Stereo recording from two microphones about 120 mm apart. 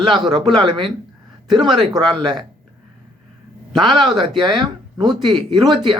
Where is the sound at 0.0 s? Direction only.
40° right (ahead or behind).